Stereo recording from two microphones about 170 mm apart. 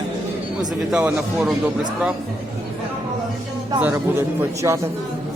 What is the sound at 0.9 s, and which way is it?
Speech, 5° right (ahead or behind).